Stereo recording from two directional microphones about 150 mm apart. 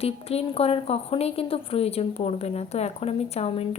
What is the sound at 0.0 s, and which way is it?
A woman's voice, 40° left (ahead or behind).